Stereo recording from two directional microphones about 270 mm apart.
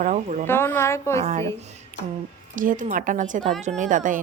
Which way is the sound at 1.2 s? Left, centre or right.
Right.